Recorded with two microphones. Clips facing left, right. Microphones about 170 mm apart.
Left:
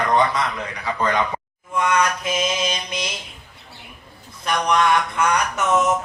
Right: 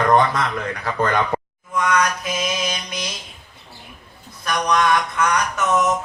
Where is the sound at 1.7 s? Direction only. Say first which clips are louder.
Even; 25° left (ahead or behind).